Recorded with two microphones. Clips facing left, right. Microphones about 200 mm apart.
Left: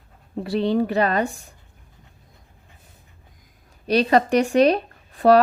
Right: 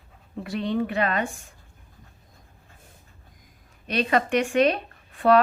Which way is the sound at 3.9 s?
35° left (ahead or behind).